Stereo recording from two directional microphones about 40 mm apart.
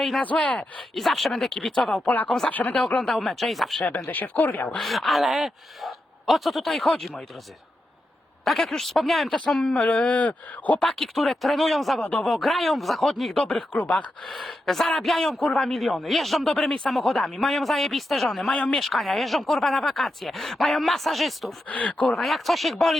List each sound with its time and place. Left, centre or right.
0.3 s speech: left
0.9 s speech: centre
1.3 s speech: centre
2.5 s speech: left
3.1 s speech: centre
3.8 s speech: left
4.8 s speech: centre
8.4 s speech: centre
9.8 s speech: left
10.8 s speech: centre
13.7 s speech: left
14.3 s speech: centre
21.7 s speech: left
22.2 s speech: centre